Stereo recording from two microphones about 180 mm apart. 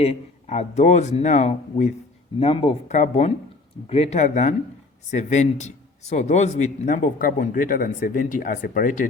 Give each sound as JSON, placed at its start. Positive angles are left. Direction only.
{"t": 0.0, "sound": "a man's voice", "side_deg": 35}